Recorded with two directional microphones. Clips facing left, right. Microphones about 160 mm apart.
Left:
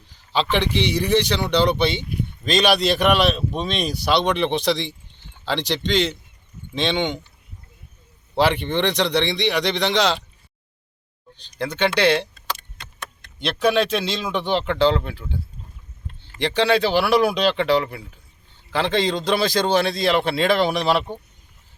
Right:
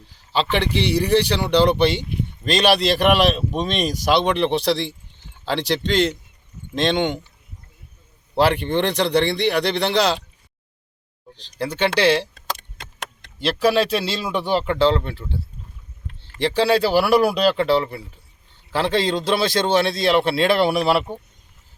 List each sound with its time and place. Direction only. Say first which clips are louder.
0.3 s speech: even; centre (ahead or behind)
8.4 s speech: right 1 dB; 5° right (ahead or behind)
11.9 s speech: right 1 dB; 5° right (ahead or behind)
12.3 s keys jangling: right 1 dB; 85° right
13.9 s speech: right 1 dB; 5° right (ahead or behind)
16.4 s speech: right 1 dB; 5° right (ahead or behind)